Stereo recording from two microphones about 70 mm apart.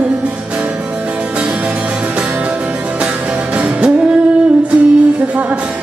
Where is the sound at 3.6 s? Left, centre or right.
Centre.